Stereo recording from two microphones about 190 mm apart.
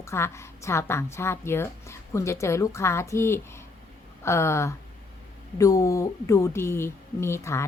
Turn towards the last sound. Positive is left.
turn(degrees=15)  # may be behind; listen again after turning